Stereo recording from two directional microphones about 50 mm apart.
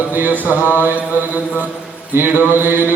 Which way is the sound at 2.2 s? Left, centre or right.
Right.